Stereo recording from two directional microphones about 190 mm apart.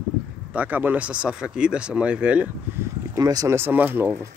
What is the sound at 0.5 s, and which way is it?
Speech, 10° right (ahead or behind).